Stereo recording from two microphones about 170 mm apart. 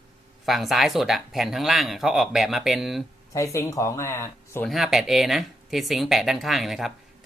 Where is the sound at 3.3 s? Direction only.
15° left (ahead or behind).